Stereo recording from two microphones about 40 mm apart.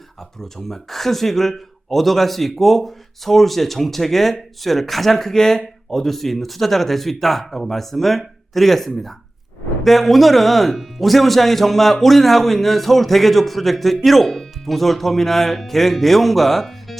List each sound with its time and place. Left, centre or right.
0.2 s speech: centre